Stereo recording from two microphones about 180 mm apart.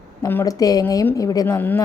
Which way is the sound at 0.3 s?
15° left (ahead or behind).